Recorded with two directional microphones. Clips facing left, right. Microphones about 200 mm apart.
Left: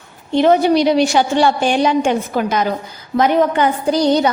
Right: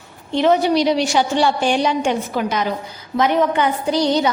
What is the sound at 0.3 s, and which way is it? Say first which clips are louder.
A woman's voice: left 3 dB; 50° left (ahead or behind).